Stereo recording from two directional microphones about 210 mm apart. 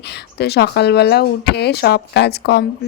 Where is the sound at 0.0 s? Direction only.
50° left (ahead or behind).